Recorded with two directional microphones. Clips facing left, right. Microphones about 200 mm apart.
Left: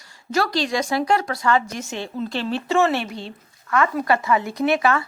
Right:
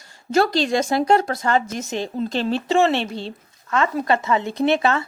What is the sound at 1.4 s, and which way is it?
Speech, 45° right (ahead or behind).